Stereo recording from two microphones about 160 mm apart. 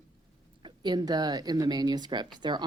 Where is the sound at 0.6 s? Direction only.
25° right (ahead or behind).